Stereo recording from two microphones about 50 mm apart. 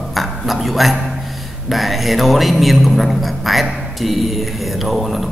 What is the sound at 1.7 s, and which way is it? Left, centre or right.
A man's voice, centre.